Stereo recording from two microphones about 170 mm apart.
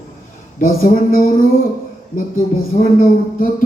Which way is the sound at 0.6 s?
55° left (ahead or behind).